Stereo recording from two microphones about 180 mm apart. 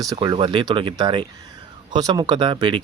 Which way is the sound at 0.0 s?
20° right (ahead or behind).